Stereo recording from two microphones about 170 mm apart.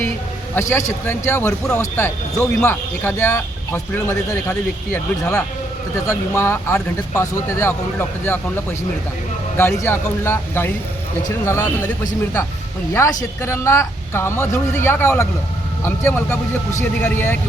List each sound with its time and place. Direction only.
0.7 s speech: 15° left (ahead or behind)
13.4 s speech: 15° left (ahead or behind)